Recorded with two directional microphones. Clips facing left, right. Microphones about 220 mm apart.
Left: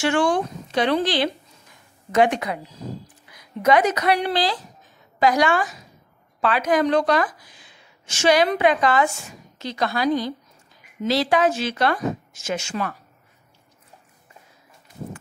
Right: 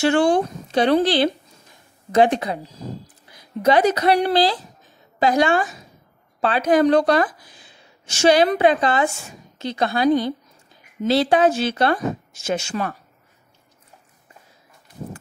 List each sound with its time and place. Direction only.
0.0 s speech: 35° right (ahead or behind)
2.1 s a woman's voice: 30° right (ahead or behind)